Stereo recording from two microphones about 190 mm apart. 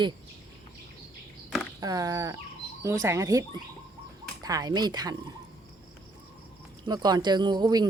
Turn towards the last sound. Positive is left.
turn(degrees=-20)  # may be behind; listen again after turning